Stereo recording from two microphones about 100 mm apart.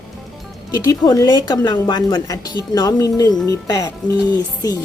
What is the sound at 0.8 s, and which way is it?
A woman's voice, 35° left (ahead or behind).